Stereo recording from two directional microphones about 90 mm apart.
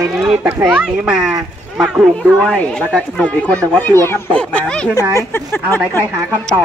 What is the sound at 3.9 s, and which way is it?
Speech, 25° left (ahead or behind).